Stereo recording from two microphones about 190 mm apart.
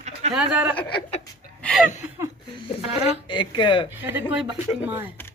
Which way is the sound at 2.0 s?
15° right (ahead or behind).